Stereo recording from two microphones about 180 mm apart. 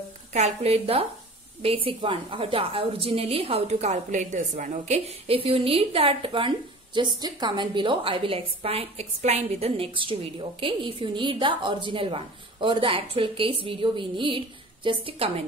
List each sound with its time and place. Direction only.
0.3 s a woman's voice: 35° right (ahead or behind)